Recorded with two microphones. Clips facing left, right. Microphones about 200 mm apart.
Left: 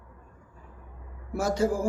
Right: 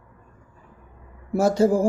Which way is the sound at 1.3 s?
25° right (ahead or behind).